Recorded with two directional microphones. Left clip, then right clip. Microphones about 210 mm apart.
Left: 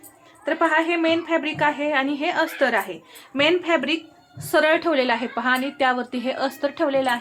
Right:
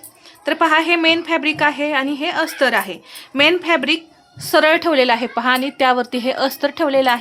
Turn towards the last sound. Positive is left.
turn(degrees=-30)  # may be behind; listen again after turning